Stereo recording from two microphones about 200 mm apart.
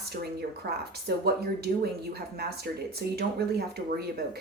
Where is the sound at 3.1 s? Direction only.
50° right (ahead or behind).